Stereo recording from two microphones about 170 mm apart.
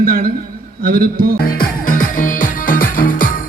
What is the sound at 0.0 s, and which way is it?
A man's voice, 60° right (ahead or behind).